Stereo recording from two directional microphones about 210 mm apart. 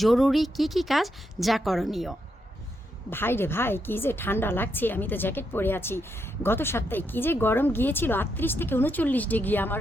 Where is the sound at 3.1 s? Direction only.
10° left (ahead or behind).